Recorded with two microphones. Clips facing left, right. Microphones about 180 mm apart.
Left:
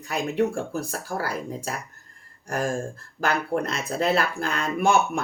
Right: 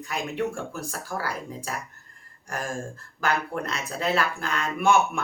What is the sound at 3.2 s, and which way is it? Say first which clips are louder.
Speech: left 3 dB; 40° left (ahead or behind).